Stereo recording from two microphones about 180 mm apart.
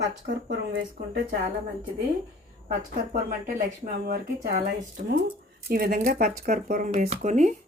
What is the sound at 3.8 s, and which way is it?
Speech, 50° right (ahead or behind).